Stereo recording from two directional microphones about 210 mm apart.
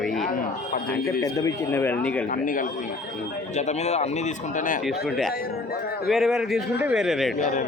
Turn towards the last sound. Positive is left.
turn(degrees=0)  # may be behind; listen again after turning